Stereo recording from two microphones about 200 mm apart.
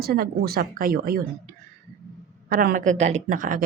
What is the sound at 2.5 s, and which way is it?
A woman's voice, 45° right (ahead or behind).